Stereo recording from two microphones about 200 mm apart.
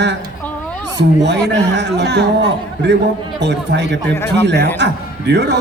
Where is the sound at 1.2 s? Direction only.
60° right (ahead or behind).